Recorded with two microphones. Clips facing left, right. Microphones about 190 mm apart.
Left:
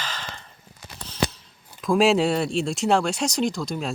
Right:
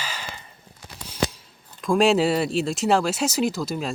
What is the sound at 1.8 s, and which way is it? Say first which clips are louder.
Speech: even; centre (ahead or behind).